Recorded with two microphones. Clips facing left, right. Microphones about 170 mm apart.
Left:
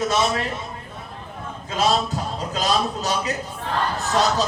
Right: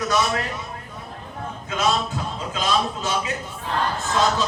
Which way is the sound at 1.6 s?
30° left (ahead or behind).